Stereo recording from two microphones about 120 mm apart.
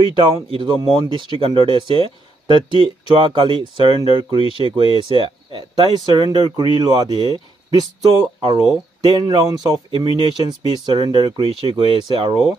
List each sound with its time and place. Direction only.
0.1 s speech: 45° right (ahead or behind)
9.8 s speech: 45° right (ahead or behind)